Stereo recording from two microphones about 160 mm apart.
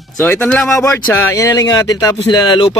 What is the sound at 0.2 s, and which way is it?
Speech, 10° left (ahead or behind).